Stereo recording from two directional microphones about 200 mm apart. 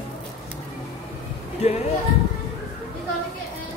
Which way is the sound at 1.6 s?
35° left (ahead or behind).